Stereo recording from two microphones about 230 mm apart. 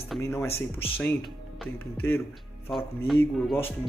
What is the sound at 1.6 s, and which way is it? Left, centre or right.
Speech, centre.